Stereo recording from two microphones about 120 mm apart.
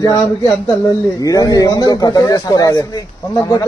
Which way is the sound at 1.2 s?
30° left (ahead or behind).